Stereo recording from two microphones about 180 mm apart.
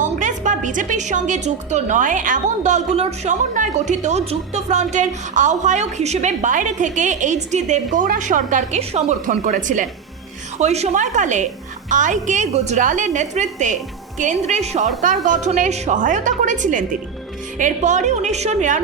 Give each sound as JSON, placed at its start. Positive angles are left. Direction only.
{"t": 0.0, "sound": "a woman's voice", "side_deg": -45}